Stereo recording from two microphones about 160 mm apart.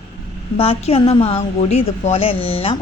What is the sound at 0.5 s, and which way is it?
Speech, 40° left (ahead or behind).